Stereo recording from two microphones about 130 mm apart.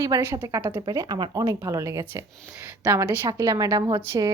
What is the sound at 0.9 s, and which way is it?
A woman's voice, 30° right (ahead or behind).